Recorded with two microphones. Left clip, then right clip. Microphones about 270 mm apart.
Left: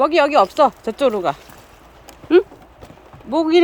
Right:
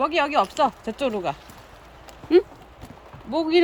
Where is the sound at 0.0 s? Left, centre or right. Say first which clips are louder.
Left 7 dB; centre.